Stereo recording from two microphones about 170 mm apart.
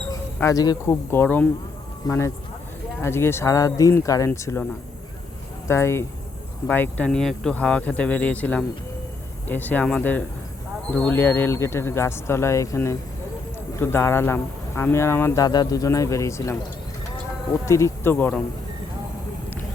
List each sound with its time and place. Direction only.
0.3 s speech: 20° left (ahead or behind)
5.6 s speech: 15° left (ahead or behind)